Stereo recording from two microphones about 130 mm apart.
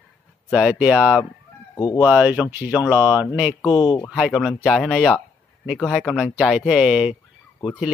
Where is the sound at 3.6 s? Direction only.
35° left (ahead or behind).